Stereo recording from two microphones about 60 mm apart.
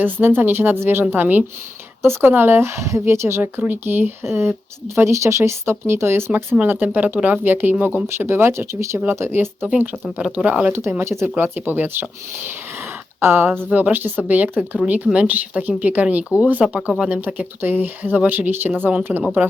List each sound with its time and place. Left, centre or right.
0.0 s speech: right
3.6 s speech: right
4.2 s speech: right
6.7 s speech: right
8.0 s speech: right
9.6 s speech: right
10.7 s speech: right
13.1 s speech: right
16.6 s speech: centre
17.1 s speech: right
19.1 s speech: centre